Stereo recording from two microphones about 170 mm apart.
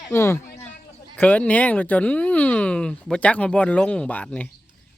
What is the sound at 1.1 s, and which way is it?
Speech, 10° left (ahead or behind).